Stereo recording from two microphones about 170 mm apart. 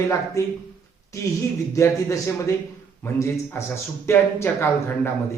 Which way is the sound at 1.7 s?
15° left (ahead or behind).